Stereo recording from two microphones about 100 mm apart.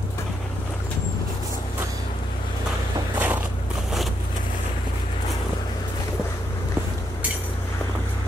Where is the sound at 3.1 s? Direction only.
15° right (ahead or behind).